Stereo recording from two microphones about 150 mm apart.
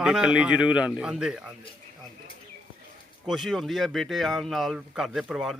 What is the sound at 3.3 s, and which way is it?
Speech, centre (ahead or behind).